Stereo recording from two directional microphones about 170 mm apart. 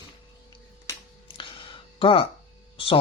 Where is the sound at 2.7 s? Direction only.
30° left (ahead or behind).